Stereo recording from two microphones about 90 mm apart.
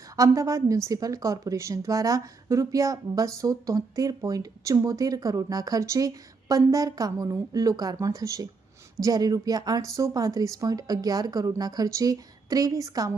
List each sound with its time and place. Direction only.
0.2 s a woman's voice: 35° right (ahead or behind)